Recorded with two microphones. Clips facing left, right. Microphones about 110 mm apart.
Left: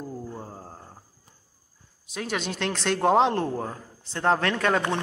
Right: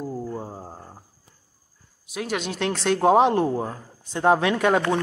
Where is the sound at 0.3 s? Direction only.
15° right (ahead or behind).